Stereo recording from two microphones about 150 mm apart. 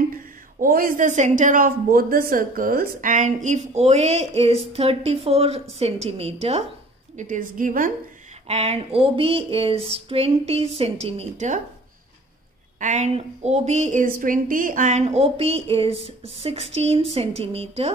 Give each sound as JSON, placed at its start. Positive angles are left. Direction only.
{"t": 0.1, "sound": "a woman's voice", "side_deg": -70}
{"t": 7.2, "sound": "a woman's voice", "side_deg": -60}
{"t": 8.5, "sound": "speech", "side_deg": -45}
{"t": 12.7, "sound": "a woman's voice", "side_deg": -55}